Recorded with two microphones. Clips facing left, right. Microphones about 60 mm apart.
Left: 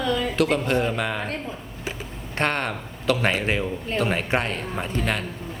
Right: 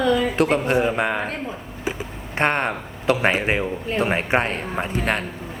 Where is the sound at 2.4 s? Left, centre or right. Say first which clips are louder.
Right 4 dB; right.